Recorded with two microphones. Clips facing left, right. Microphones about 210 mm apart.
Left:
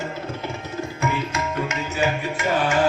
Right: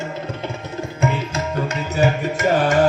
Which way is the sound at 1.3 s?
35° right (ahead or behind).